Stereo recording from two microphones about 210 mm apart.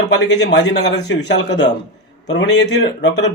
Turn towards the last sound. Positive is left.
turn(degrees=55)  # may be behind; listen again after turning